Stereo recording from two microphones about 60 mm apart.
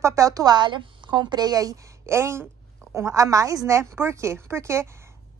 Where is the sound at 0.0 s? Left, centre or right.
Right.